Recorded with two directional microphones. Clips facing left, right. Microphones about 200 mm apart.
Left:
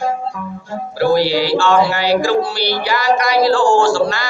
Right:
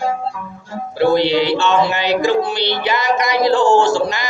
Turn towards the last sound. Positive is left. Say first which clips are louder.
# left 1 dB
turn(degrees=-20)  # may be behind; listen again after turning